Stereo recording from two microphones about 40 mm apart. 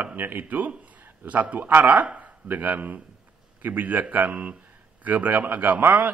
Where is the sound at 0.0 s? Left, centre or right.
Right.